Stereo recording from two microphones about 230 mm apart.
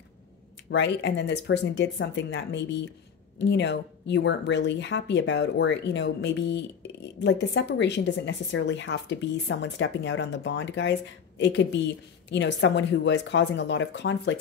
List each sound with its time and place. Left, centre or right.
0.7 s a woman's voice: left